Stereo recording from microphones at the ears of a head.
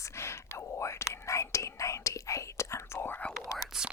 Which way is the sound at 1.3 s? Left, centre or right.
Left.